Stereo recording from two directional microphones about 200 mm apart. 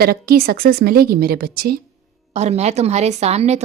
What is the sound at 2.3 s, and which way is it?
Speech, 35° right (ahead or behind).